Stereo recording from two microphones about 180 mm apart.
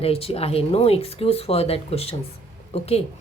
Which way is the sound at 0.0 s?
35° left (ahead or behind).